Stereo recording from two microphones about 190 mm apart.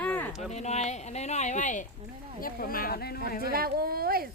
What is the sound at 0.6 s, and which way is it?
Speech, 35° left (ahead or behind).